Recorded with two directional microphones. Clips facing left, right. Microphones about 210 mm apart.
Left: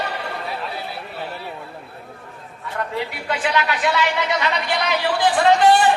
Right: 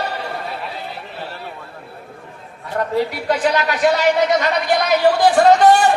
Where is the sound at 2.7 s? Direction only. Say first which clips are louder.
Right 7 dB; 40° right (ahead or behind).